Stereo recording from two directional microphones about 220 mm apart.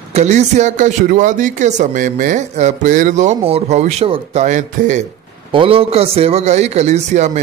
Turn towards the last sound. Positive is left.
turn(degrees=-30)  # may be behind; listen again after turning